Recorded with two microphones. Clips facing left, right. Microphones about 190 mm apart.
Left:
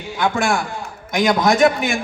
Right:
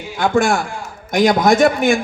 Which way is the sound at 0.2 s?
50° right (ahead or behind).